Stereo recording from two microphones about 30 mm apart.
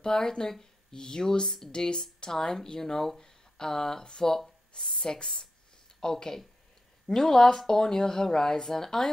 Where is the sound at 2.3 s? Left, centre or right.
Centre.